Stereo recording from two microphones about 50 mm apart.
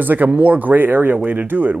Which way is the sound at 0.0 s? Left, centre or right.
Right.